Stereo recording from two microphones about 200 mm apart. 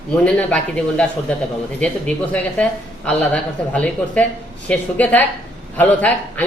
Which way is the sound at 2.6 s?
5° left (ahead or behind).